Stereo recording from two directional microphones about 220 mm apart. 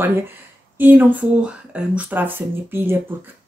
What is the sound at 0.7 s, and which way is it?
Speech, 10° right (ahead or behind).